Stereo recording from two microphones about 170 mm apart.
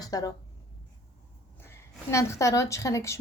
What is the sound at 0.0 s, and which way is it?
Speech, 20° left (ahead or behind).